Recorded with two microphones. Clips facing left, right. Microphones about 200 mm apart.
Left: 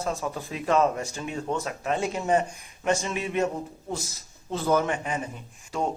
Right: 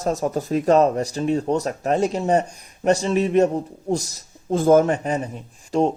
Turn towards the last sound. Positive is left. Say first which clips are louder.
# right 9 dB
turn(degrees=-40)  # may be behind; listen again after turning